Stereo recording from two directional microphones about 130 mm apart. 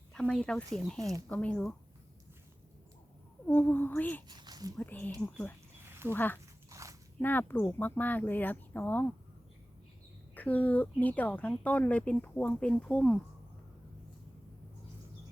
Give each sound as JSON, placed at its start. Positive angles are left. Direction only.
{"t": 0.1, "sound": "speech", "side_deg": 5}
{"t": 3.4, "sound": "speech", "side_deg": 15}
{"t": 4.3, "sound": "a sound", "side_deg": -30}
{"t": 4.8, "sound": "speech", "side_deg": 10}
{"t": 5.8, "sound": "a sound", "side_deg": -20}
{"t": 6.1, "sound": "speech", "side_deg": 15}
{"t": 6.7, "sound": "biting", "side_deg": -25}
{"t": 7.2, "sound": "speech", "side_deg": 15}
{"t": 10.3, "sound": "speech", "side_deg": 10}